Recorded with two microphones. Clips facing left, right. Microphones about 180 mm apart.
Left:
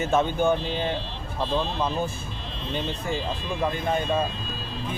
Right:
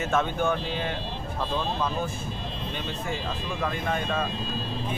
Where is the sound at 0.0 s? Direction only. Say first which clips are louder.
Left 3 dB; 30° left (ahead or behind).